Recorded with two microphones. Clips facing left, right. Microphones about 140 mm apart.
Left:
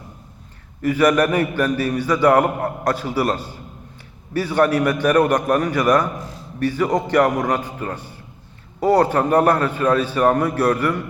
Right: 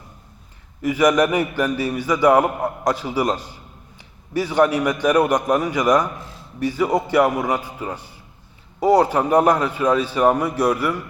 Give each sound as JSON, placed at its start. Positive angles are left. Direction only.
{"t": 0.8, "sound": "a man's voice", "side_deg": -15}